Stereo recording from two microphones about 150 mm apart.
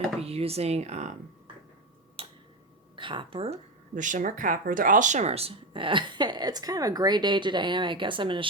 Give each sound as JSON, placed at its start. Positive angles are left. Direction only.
{"t": 0.2, "sound": "speech", "side_deg": -40}
{"t": 2.2, "sound": "tick-tock", "side_deg": -40}
{"t": 2.9, "sound": "a woman's voice", "side_deg": -35}
{"t": 3.9, "sound": "speech", "side_deg": -60}